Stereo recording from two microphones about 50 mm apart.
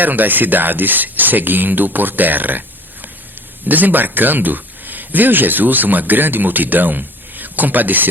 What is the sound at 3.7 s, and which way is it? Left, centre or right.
Speech, right.